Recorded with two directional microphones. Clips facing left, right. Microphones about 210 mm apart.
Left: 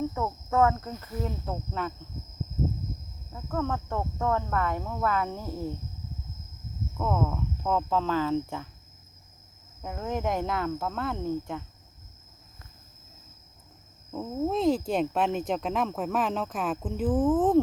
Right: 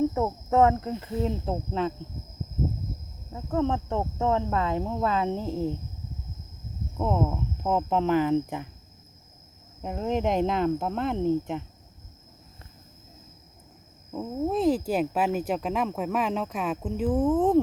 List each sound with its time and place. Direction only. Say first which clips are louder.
0.1 s speech: right 4 dB; 25° right (ahead or behind)
3.3 s speech: right 4 dB; 25° right (ahead or behind)
6.9 s speech: right 2 dB; 20° right (ahead or behind)
9.8 s speech: right 4 dB; 20° right (ahead or behind)
14.1 s speech: right 1 dB; 10° right (ahead or behind)